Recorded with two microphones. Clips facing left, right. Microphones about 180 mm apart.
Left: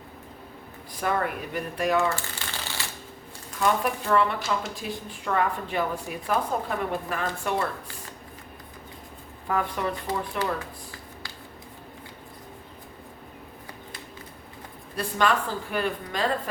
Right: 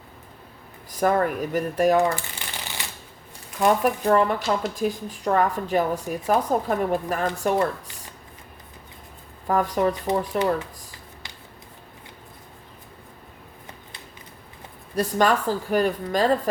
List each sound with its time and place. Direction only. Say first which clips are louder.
0.9 s speech: right 6 dB; 40° right (ahead or behind)
2.0 s shuffling cards: right 4 dB; 15° right (ahead or behind)
3.8 s speech: right 4 dB; 40° right (ahead or behind)
9.5 s speech: right 6 dB; 40° right (ahead or behind)
14.9 s speech: right 4 dB; 40° right (ahead or behind)